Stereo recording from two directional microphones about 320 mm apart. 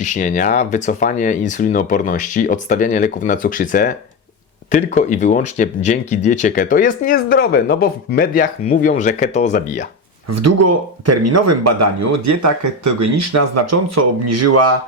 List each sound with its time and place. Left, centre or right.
0.0 s speech: left
10.2 s speech: right